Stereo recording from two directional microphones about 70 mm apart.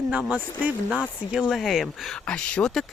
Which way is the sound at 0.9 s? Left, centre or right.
Centre.